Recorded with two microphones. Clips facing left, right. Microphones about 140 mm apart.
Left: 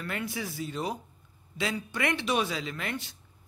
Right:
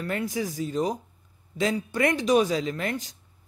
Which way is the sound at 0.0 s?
40° right (ahead or behind).